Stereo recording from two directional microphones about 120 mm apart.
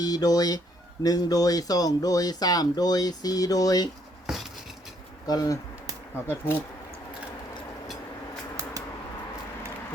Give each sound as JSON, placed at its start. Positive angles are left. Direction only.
{"t": 0.0, "sound": "speech", "side_deg": 35}
{"t": 5.2, "sound": "speech", "side_deg": 30}
{"t": 6.2, "sound": "speech", "side_deg": 20}